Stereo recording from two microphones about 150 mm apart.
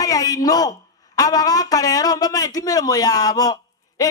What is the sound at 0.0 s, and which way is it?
Speech, 25° left (ahead or behind).